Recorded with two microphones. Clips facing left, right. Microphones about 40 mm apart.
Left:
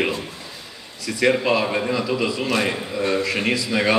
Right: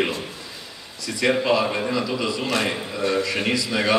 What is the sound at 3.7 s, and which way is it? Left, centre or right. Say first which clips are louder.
Speech: left 3 dB; centre.